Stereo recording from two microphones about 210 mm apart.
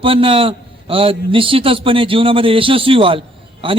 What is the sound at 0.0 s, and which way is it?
A man's voice, 25° right (ahead or behind).